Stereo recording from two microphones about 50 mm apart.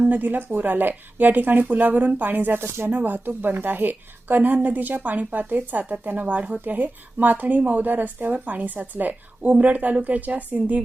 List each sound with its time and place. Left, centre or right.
0.1 s a woman's voice: right
2.6 s speech: right
2.9 s a woman's voice: right